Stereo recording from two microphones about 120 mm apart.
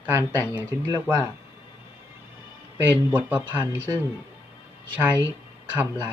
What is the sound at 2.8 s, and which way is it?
Speech, 15° right (ahead or behind).